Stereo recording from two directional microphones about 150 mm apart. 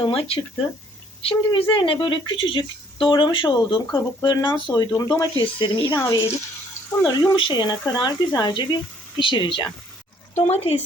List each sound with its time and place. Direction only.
0.0 s speech: 40° left (ahead or behind)
6.0 s speech: 20° left (ahead or behind)
10.3 s speech: 45° left (ahead or behind)